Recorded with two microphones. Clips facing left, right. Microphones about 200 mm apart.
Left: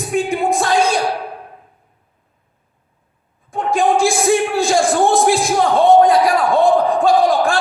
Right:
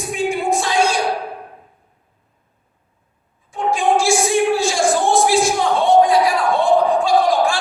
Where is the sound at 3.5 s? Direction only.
55° left (ahead or behind).